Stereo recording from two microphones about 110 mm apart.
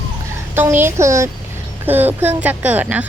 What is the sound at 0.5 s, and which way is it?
Speech, 20° right (ahead or behind).